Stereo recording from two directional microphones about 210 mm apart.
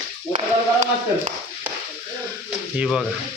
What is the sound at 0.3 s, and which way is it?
Speech, 35° right (ahead or behind).